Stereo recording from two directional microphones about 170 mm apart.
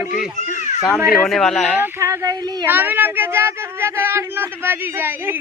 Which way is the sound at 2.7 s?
10° right (ahead or behind).